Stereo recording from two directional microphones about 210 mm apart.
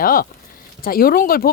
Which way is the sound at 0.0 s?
45° left (ahead or behind).